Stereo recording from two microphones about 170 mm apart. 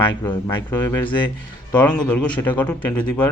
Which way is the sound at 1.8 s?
10° left (ahead or behind).